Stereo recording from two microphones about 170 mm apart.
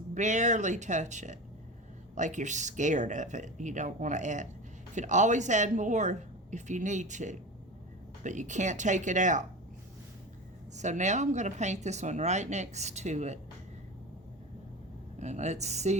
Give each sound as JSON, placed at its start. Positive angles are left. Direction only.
{"t": 0.1, "sound": "speech", "side_deg": -45}
{"t": 10.8, "sound": "speech", "side_deg": -45}
{"t": 15.2, "sound": "a woman's voice", "side_deg": -45}